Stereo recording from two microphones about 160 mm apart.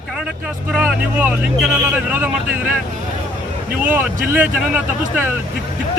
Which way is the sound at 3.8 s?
10° right (ahead or behind).